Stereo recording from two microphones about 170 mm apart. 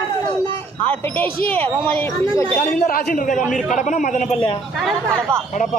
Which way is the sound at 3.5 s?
Centre (ahead or behind).